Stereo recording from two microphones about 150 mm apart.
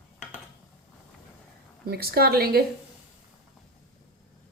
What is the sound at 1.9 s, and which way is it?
Speech, 90° right.